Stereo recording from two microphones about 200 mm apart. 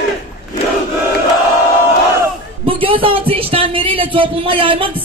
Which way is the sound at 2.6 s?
25° right (ahead or behind).